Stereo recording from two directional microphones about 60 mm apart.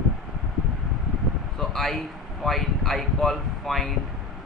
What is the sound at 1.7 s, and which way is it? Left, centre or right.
Speech, centre.